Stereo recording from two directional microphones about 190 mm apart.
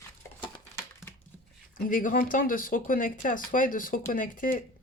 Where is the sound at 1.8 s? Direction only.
45° left (ahead or behind).